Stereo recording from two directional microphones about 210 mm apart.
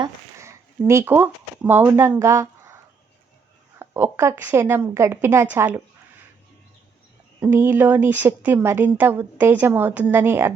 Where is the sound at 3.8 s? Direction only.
10° right (ahead or behind).